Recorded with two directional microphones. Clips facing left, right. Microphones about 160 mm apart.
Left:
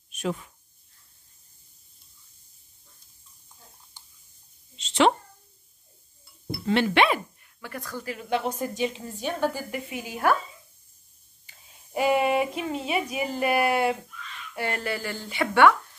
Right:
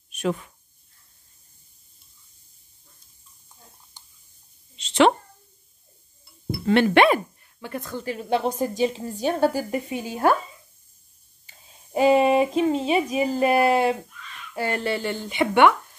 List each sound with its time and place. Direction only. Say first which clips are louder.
0.1 s speech: right 4 dB; 65° right (ahead or behind)
4.7 s speech: right 3 dB; 65° right (ahead or behind)
6.7 s speech: right 5 dB; 50° right (ahead or behind)
7.6 s a woman's voice: right 5 dB; 25° right (ahead or behind)
11.9 s speech: right 5 dB; 25° right (ahead or behind)